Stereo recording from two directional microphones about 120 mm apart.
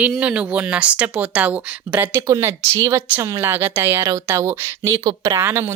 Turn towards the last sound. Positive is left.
turn(degrees=-20)  # may be behind; listen again after turning